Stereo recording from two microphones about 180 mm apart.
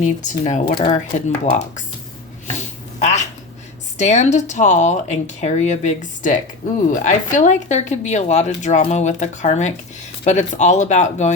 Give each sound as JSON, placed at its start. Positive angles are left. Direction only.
{"t": 0.0, "sound": "speech", "side_deg": 45}
{"t": 0.6, "sound": "speech", "side_deg": 55}
{"t": 1.1, "sound": "speech", "side_deg": 40}
{"t": 2.6, "sound": "a sound", "side_deg": 40}
{"t": 3.9, "sound": "speech", "side_deg": 40}